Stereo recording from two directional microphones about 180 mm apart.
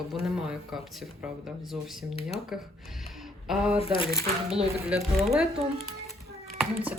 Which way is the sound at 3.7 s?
30° left (ahead or behind).